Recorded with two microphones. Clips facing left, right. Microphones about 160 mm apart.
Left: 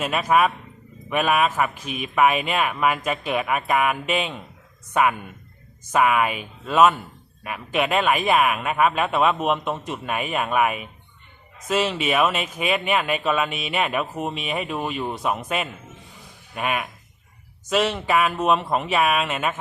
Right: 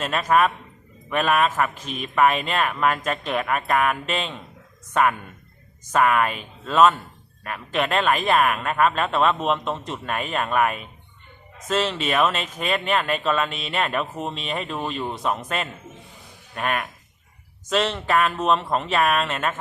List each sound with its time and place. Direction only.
0.0 s speech: 5° left (ahead or behind)